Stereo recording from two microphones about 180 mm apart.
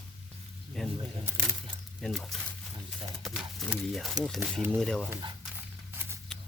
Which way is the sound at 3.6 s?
5° left (ahead or behind).